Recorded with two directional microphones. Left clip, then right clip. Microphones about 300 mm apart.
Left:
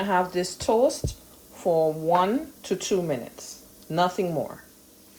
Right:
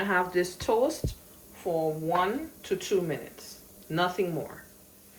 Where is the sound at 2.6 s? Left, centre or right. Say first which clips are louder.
Right 1 dB; centre.